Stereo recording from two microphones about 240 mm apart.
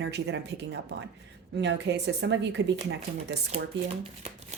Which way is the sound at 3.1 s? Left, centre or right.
Right.